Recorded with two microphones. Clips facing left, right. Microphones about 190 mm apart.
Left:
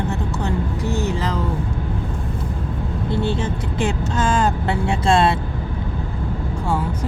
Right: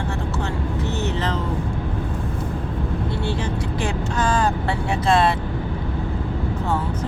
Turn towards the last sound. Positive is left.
turn(degrees=10)  # may be behind; listen again after turning